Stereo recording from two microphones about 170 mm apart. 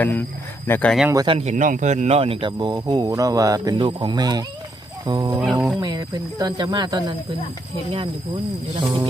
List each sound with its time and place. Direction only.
0.0 s speech: 10° left (ahead or behind)
1.1 s speech: 25° right (ahead or behind)
1.4 s speech: 45° right (ahead or behind); by 5.4 s 25° right (ahead or behind)
5.4 s speech: 5° right (ahead or behind)
5.8 s speech: 20° right (ahead or behind)